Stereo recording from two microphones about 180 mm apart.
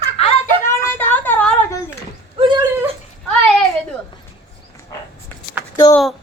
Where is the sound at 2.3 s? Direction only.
30° right (ahead or behind).